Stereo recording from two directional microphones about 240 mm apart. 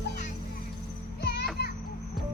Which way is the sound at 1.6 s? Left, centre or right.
Left.